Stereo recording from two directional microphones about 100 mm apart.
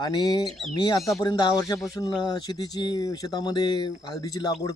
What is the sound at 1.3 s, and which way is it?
Speech, 45° left (ahead or behind).